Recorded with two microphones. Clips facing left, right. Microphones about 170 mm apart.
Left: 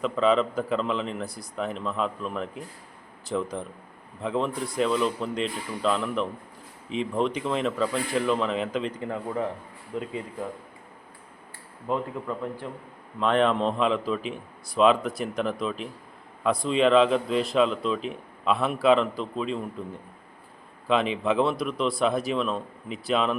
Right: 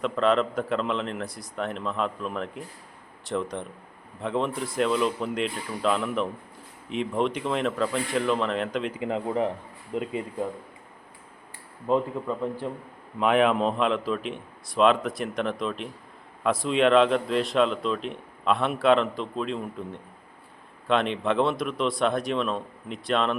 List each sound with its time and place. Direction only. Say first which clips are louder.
0.0 s a man's voice: left 1 dB; centre (ahead or behind)
9.0 s speech: right 3 dB; 20° right (ahead or behind)
11.9 s speech: right 4 dB; 20° right (ahead or behind)
13.1 s a man's voice: right 1 dB; 10° right (ahead or behind)